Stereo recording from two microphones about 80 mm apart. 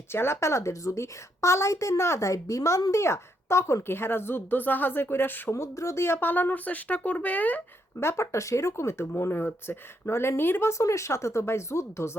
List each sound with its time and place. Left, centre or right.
0.1 s a woman's voice: left
7.9 s a woman's voice: left